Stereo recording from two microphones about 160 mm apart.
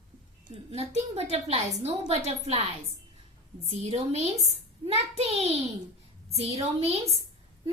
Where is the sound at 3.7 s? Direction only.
40° right (ahead or behind).